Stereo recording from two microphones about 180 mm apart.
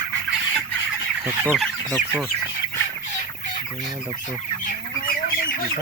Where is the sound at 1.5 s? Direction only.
Centre (ahead or behind).